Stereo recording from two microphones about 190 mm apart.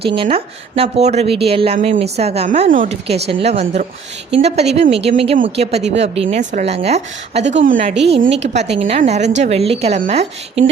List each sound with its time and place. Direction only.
0.0 s a woman's voice: 30° right (ahead or behind)
2.6 s a woman's voice: 45° right (ahead or behind)
8.7 s a woman's voice: 30° right (ahead or behind)